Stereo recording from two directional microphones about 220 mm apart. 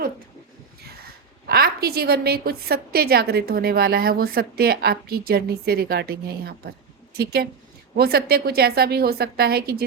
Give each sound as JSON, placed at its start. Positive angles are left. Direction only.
{"t": 0.9, "sound": "a woman's voice", "side_deg": -45}